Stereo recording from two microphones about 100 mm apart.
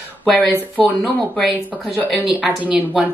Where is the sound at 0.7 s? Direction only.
10° left (ahead or behind).